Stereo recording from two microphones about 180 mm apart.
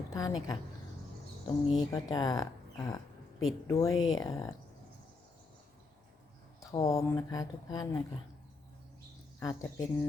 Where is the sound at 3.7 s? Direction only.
20° left (ahead or behind).